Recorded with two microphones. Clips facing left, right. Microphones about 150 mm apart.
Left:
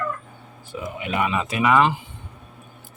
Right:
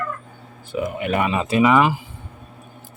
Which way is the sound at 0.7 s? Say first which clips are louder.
Right 5 dB; 60° right (ahead or behind).